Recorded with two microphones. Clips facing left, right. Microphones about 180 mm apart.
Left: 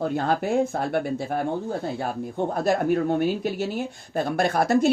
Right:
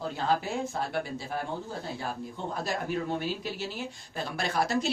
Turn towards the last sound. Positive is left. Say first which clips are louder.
# left 8 dB
turn(degrees=50)  # may be behind; listen again after turning